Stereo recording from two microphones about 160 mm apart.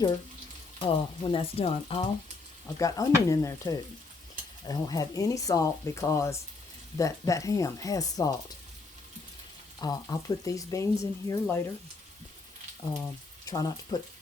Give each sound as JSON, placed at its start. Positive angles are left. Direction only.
{"t": 0.8, "sound": "speech", "side_deg": 35}
{"t": 2.7, "sound": "speech", "side_deg": 20}
{"t": 9.8, "sound": "speech", "side_deg": 25}
{"t": 13.0, "sound": "speech", "side_deg": 20}